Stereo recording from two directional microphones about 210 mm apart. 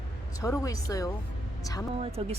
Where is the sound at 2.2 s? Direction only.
30° right (ahead or behind).